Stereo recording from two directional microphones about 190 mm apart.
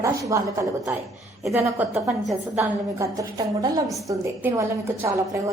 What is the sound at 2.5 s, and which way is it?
A woman's voice, 15° right (ahead or behind).